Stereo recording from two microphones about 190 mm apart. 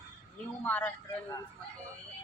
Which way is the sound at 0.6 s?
10° left (ahead or behind).